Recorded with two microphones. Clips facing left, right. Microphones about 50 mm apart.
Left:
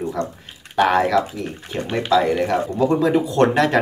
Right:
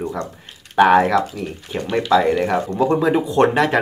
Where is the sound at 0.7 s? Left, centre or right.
Centre.